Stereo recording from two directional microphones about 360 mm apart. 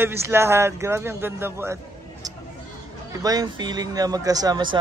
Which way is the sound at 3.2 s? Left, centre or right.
Centre.